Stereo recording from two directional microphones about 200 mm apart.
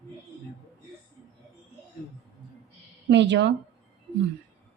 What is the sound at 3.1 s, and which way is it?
Speech, 60° right (ahead or behind).